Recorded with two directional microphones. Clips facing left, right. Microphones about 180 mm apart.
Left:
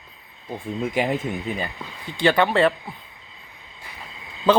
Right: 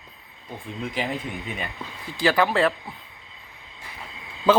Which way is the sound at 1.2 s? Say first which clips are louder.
Left 5 dB; 35° left (ahead or behind).